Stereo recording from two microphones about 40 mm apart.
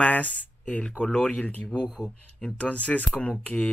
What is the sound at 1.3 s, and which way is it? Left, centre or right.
Speech, left.